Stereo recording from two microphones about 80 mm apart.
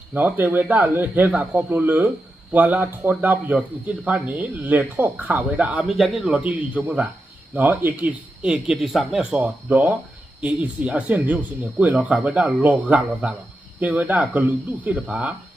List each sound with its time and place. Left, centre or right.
0.1 s a man's voice: right
5.9 s speech: centre
6.2 s a man's voice: centre
8.4 s speech: centre
9.3 s a man's voice: right